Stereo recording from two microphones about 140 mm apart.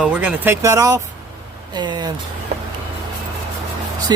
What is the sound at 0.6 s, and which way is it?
Speech, 25° right (ahead or behind).